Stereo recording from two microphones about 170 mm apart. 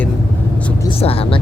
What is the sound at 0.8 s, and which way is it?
Speech, 35° left (ahead or behind).